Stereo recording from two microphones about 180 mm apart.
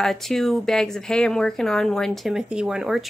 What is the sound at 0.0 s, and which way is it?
Speech, centre (ahead or behind).